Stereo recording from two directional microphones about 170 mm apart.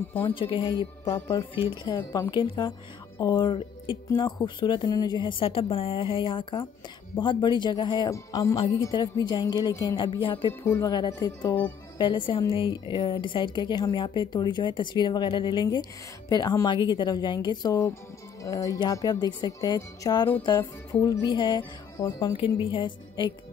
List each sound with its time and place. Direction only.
0.2 s a woman's voice: 30° left (ahead or behind)
1.0 s a woman's voice: 15° left (ahead or behind); by 10.5 s 30° left (ahead or behind)
10.6 s a woman's voice: 15° left (ahead or behind)